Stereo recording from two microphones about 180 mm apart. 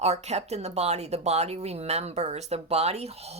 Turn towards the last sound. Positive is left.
turn(degrees=-35)  # may be behind; listen again after turning